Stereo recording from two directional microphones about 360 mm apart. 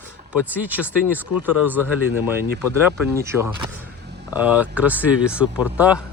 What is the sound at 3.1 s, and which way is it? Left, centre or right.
Speech, centre.